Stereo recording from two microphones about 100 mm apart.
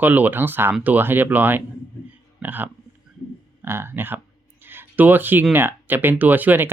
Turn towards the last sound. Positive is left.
turn(degrees=-20)  # may be behind; listen again after turning